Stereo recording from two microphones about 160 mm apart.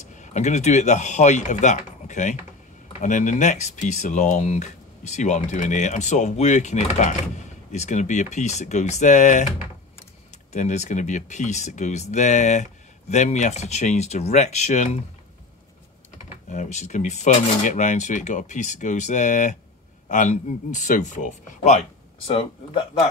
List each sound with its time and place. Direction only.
0.0 s speech: 50° left (ahead or behind)
10.5 s speech: 45° left (ahead or behind)
16.4 s speech: 50° left (ahead or behind)
22.3 s speech: 35° left (ahead or behind)